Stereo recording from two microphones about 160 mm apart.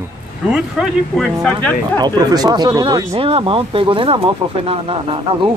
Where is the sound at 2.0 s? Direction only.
25° right (ahead or behind).